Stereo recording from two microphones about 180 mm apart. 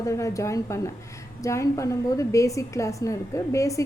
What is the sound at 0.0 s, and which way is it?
A woman's voice, 15° left (ahead or behind).